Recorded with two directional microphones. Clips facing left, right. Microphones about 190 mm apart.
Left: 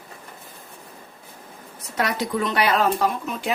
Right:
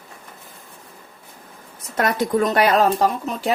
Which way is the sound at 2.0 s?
50° right (ahead or behind).